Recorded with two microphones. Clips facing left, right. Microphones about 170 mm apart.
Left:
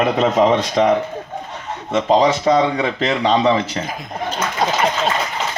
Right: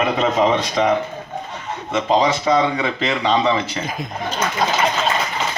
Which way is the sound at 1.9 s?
45° left (ahead or behind).